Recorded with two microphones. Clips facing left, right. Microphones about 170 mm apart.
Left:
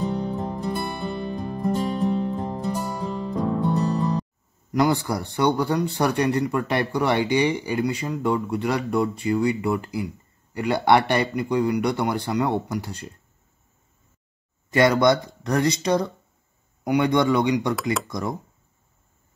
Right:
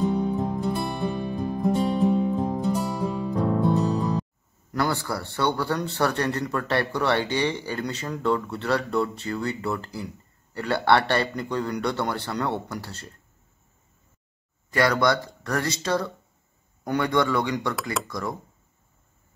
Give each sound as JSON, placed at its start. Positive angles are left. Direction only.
{"t": 0.0, "sound": "music", "side_deg": 0}
{"t": 4.7, "sound": "speech", "side_deg": 15}
{"t": 14.7, "sound": "speech", "side_deg": 20}